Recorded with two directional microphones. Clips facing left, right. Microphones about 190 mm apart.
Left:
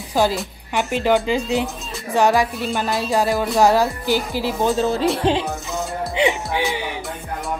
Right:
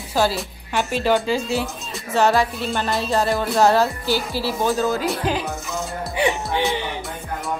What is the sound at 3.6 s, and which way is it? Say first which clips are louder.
Speech: even; 15° left (ahead or behind).